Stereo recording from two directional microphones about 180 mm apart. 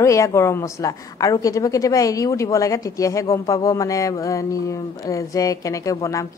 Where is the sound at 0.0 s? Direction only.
15° left (ahead or behind).